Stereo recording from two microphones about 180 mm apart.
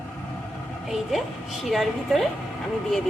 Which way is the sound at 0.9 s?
Centre (ahead or behind).